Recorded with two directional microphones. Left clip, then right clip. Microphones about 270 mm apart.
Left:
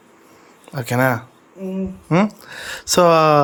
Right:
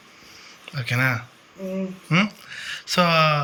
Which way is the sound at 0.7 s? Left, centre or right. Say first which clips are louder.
Left 5 dB; centre.